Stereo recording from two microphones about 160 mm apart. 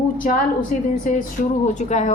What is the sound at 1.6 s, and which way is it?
Speech, 50° left (ahead or behind).